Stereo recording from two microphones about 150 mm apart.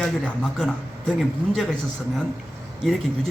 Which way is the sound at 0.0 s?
5° left (ahead or behind).